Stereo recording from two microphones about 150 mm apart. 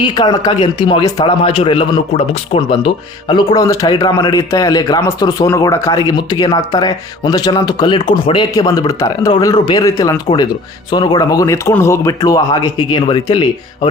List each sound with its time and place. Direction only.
0.0 s a man's voice: 30° left (ahead or behind)